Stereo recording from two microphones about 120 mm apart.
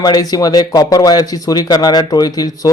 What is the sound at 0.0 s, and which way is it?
Speech, 30° left (ahead or behind).